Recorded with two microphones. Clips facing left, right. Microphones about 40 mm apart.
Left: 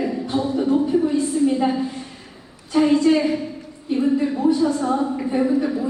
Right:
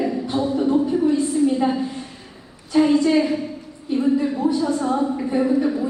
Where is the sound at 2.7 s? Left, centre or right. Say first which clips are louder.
Even; centre.